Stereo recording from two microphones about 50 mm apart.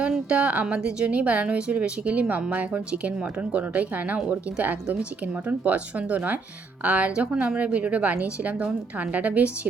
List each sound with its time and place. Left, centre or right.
0.1 s a woman's voice: right